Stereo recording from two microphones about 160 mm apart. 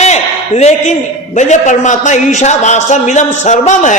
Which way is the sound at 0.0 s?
45° left (ahead or behind).